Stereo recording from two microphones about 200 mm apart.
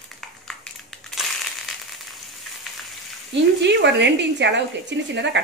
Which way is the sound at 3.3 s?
60° right (ahead or behind).